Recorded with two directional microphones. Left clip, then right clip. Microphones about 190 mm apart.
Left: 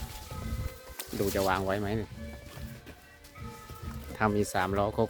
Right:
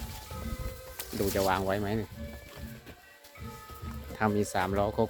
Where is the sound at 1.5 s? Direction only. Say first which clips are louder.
Even; 10° left (ahead or behind).